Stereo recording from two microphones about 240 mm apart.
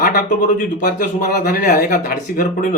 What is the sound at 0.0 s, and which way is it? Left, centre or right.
Speech, left.